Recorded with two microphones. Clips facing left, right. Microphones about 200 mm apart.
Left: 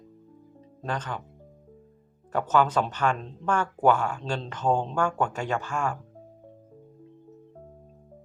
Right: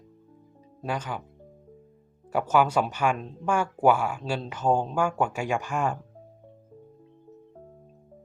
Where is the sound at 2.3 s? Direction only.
10° right (ahead or behind).